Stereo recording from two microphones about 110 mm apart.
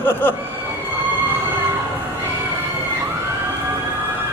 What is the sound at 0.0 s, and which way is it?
Speech, 20° left (ahead or behind).